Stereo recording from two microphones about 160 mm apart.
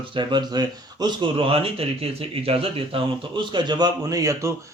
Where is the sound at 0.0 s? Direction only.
30° right (ahead or behind).